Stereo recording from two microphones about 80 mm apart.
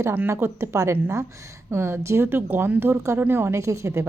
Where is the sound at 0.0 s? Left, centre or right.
Right.